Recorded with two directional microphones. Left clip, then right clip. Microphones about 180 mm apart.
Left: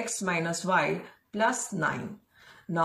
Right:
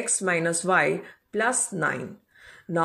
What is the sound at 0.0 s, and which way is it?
Speech, 30° right (ahead or behind).